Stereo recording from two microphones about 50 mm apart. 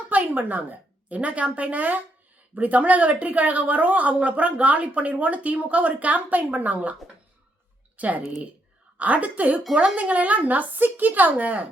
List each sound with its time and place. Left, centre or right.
0.1 s a woman's voice: right
7.9 s a woman's voice: right